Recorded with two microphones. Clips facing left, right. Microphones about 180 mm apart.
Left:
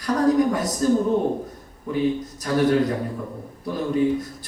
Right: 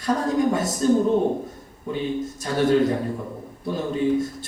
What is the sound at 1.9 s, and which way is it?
A man's voice, 25° right (ahead or behind).